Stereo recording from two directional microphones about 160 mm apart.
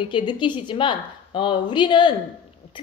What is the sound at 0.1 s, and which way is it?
A woman's voice, 30° left (ahead or behind).